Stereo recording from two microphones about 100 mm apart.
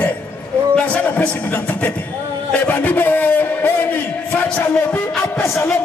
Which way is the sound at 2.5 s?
15° left (ahead or behind).